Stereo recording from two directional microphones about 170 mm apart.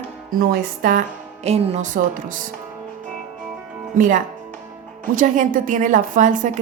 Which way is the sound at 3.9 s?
50° right (ahead or behind).